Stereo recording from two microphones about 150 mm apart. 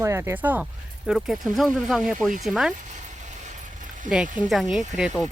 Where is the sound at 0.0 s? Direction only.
20° right (ahead or behind); by 2.7 s centre (ahead or behind).